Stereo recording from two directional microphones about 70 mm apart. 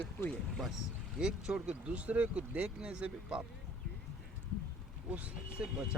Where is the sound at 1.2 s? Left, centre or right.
Centre.